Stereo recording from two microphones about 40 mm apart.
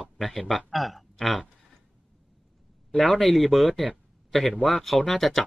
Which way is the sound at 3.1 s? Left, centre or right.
Centre.